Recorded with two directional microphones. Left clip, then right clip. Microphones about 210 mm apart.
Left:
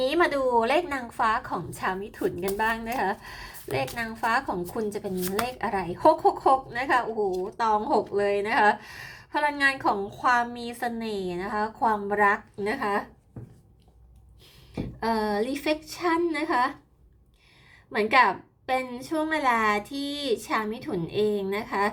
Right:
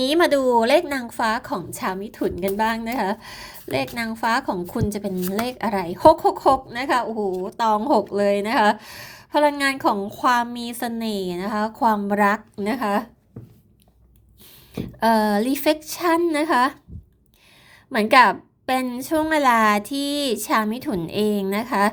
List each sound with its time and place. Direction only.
0.0 s a woman's voice: 40° right (ahead or behind)
14.8 s a woman's voice: 40° right (ahead or behind)
17.9 s a woman's voice: 40° right (ahead or behind)